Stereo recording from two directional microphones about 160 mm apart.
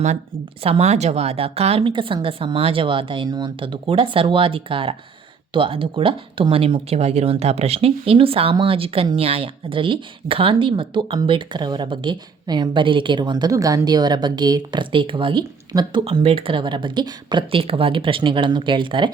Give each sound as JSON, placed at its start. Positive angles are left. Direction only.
{"t": 0.6, "sound": "speech", "side_deg": -40}